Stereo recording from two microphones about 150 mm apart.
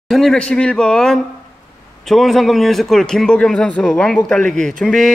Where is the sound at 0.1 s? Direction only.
5° left (ahead or behind).